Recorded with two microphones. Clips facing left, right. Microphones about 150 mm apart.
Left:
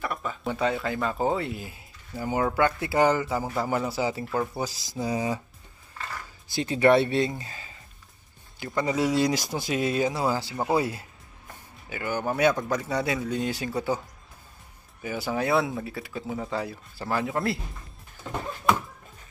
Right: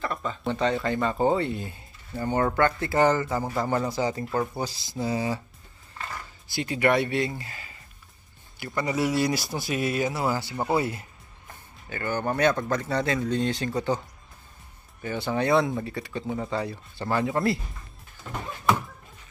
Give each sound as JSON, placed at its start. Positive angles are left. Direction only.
{"t": 0.0, "sound": "speech", "side_deg": 5}
{"t": 6.5, "sound": "speech", "side_deg": 20}
{"t": 8.8, "sound": "speech", "side_deg": 15}